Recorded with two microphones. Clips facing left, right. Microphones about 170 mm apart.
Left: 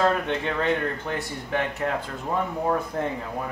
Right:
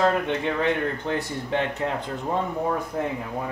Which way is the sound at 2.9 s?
10° right (ahead or behind).